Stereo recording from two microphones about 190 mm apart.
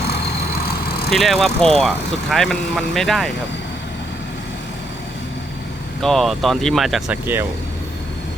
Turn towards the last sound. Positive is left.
turn(degrees=-10)  # may be behind; listen again after turning